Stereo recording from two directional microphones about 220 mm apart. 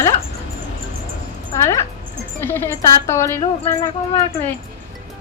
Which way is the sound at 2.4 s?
10° left (ahead or behind).